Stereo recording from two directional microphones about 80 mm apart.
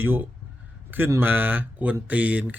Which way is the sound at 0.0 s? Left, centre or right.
Right.